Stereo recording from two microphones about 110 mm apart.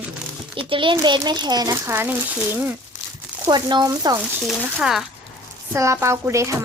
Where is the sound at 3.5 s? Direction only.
40° right (ahead or behind).